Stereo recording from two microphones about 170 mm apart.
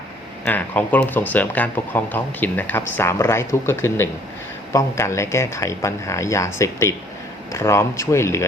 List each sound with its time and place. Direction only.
0.4 s speech: 10° left (ahead or behind)